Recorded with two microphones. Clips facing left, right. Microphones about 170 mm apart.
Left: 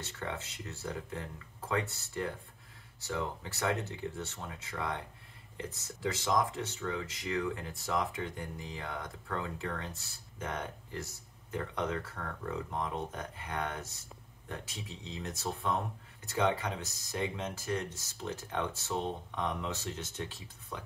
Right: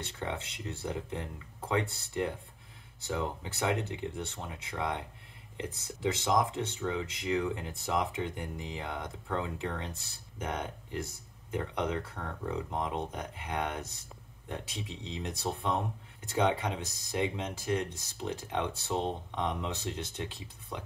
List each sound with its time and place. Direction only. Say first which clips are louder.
0.2 s speech: right 3 dB; 20° right (ahead or behind)
6.0 s speech: right 2 dB; 20° right (ahead or behind)
20.7 s speech: right 2 dB; 20° right (ahead or behind)